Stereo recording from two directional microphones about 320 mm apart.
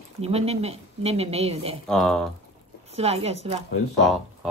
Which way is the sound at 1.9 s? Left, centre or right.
Centre.